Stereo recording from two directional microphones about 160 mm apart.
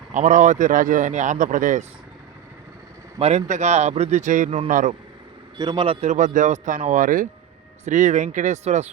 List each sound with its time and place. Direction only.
0.1 s speech: 50° right (ahead or behind)
3.2 s a man's voice: 40° right (ahead or behind)
5.5 s speech: 25° right (ahead or behind); by 8.9 s 45° right (ahead or behind)